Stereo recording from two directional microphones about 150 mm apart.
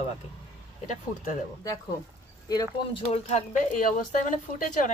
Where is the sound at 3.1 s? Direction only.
50° left (ahead or behind).